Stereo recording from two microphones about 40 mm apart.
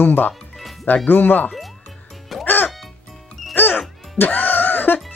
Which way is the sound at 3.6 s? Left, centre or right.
Left.